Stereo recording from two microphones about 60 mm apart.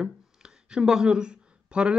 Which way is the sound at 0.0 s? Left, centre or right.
Centre.